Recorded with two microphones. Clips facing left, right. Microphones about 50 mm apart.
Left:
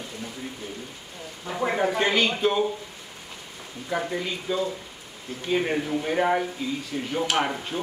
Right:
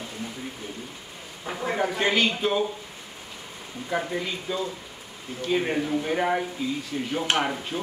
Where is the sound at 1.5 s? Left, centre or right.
Right.